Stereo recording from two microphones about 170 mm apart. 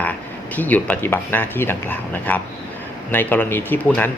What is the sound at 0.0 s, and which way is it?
Speech, 10° left (ahead or behind).